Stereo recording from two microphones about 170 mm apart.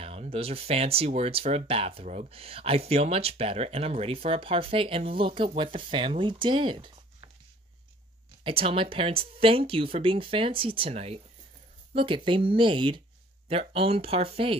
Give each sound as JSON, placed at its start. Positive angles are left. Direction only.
{"t": 0.0, "sound": "speech", "side_deg": -35}
{"t": 8.5, "sound": "speech", "side_deg": -30}